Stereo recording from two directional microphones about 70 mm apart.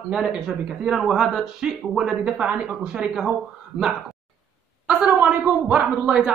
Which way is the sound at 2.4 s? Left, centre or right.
Right.